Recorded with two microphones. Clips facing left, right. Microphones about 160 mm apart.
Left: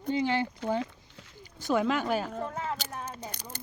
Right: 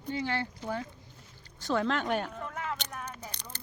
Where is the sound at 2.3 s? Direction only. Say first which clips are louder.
Left 3 dB; 35° left (ahead or behind).